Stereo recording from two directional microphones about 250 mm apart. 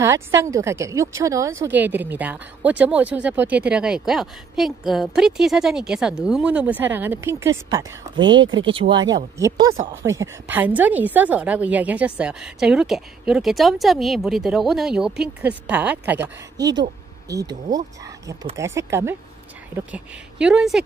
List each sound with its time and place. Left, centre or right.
0.0 s a woman's voice: centre